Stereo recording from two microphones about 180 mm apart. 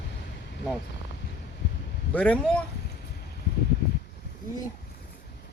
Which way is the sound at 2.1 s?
5° left (ahead or behind).